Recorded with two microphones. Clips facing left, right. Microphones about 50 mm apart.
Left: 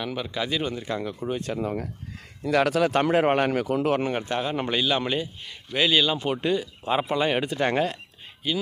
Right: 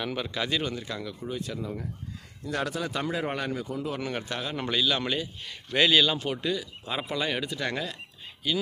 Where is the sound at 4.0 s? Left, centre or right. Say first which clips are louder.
Left 6 dB; left.